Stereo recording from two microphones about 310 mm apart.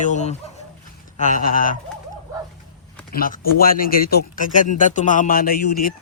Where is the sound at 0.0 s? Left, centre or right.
Left.